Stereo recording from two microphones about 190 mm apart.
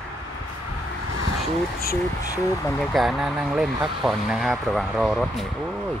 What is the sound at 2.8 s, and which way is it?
Speech, centre (ahead or behind).